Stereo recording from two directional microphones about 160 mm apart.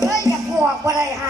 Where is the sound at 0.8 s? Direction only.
20° right (ahead or behind).